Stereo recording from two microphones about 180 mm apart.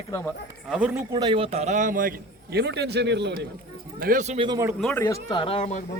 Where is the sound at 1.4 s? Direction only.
40° right (ahead or behind); by 3.3 s 70° right (ahead or behind).